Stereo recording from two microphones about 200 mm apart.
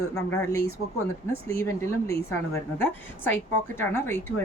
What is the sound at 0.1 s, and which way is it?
A woman's voice, 15° left (ahead or behind).